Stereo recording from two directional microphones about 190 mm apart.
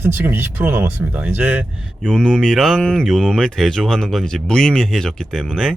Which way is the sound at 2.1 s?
5° left (ahead or behind).